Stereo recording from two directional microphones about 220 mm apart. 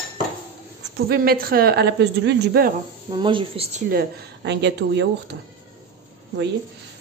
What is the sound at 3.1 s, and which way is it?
Speech, 20° right (ahead or behind).